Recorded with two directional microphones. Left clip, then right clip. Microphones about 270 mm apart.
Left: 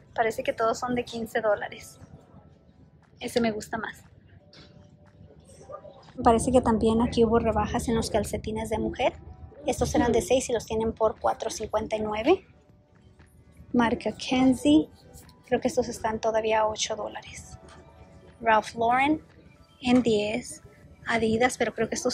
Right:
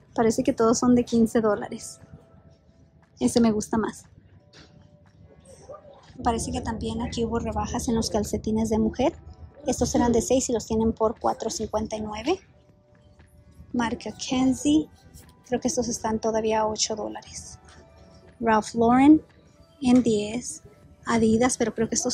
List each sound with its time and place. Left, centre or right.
0.1 s speech: centre
3.2 s a woman's voice: centre
6.2 s a woman's voice: centre
13.7 s a woman's voice: centre